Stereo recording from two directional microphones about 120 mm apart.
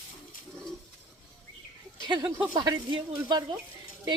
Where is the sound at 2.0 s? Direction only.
35° right (ahead or behind).